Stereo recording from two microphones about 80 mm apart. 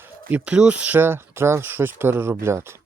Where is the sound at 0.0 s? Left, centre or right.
Right.